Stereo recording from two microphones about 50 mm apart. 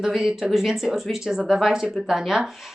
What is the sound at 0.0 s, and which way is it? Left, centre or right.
Speech, centre.